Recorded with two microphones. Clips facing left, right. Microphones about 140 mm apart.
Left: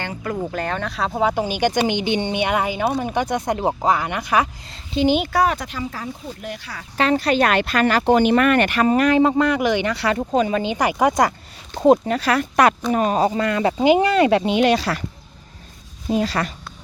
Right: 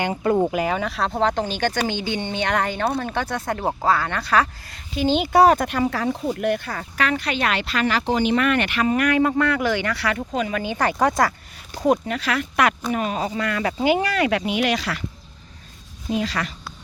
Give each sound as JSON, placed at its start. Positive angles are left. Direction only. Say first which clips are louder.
{"t": 0.1, "sound": "speech", "louder": "right 6 dB", "side_deg": -30}
{"t": 0.5, "sound": "speech", "louder": "right 2 dB", "side_deg": -5}
{"t": 4.7, "sound": "speech", "louder": "left 5 dB", "side_deg": 25}
{"t": 5.5, "sound": "speech", "louder": "right 7 dB", "side_deg": -55}
{"t": 6.9, "sound": "speech", "louder": "left 6 dB", "side_deg": 30}
{"t": 8.9, "sound": "speech", "louder": "left 3 dB", "side_deg": 30}
{"t": 11.2, "sound": "speech", "louder": "left 2 dB", "side_deg": 20}
{"t": 16.0, "sound": "speech", "louder": "left 4 dB", "side_deg": 35}